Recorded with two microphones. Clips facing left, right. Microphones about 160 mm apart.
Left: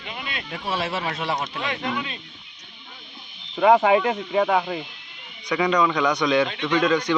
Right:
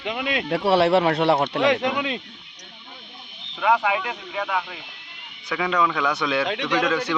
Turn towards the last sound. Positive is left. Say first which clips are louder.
# left 2 dB
turn(degrees=-5)  # may be behind; listen again after turning